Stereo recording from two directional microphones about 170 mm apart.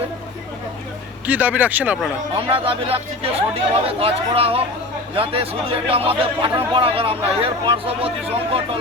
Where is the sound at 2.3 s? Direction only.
30° right (ahead or behind).